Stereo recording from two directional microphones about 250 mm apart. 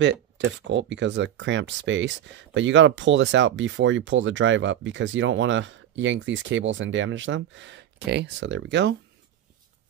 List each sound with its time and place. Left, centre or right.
0.0 s speech: right